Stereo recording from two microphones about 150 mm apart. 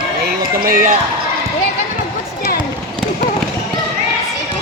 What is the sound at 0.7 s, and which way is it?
Speech, 65° right (ahead or behind).